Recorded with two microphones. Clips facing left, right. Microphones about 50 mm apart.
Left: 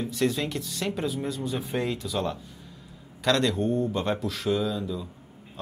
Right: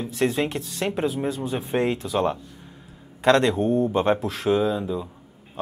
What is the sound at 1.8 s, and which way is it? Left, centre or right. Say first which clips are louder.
A man's voice: right 7 dB; right.